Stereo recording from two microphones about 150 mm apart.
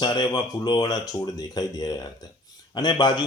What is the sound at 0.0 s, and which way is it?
A man's voice, 30° left (ahead or behind).